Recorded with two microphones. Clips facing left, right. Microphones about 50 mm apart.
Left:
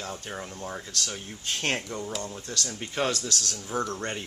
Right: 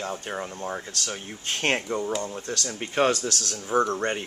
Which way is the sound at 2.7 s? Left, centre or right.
Right.